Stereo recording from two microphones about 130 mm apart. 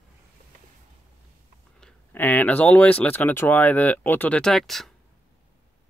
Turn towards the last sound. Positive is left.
turn(degrees=0)  # may be behind; listen again after turning